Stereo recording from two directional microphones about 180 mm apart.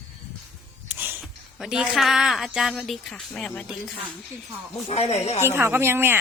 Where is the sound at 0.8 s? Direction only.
10° right (ahead or behind).